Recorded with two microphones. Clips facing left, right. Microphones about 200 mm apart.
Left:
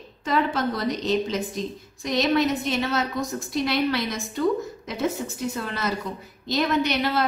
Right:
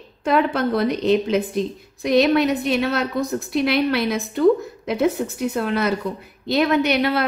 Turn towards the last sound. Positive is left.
turn(degrees=-60)  # may be behind; listen again after turning